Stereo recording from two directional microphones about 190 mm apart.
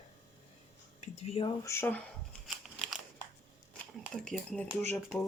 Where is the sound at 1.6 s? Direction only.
15° left (ahead or behind).